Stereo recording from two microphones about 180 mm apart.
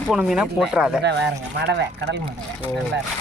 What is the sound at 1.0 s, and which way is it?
Speech, 70° right (ahead or behind).